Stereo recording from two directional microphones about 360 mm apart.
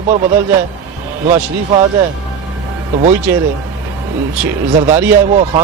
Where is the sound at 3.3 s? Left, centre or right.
Centre.